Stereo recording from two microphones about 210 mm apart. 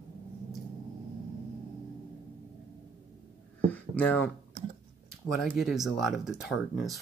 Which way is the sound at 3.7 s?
5° left (ahead or behind).